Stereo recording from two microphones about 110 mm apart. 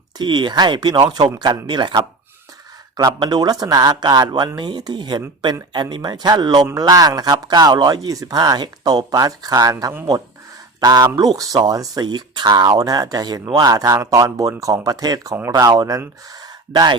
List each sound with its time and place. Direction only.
0.2 s speech: 45° right (ahead or behind)
3.0 s speech: 40° right (ahead or behind)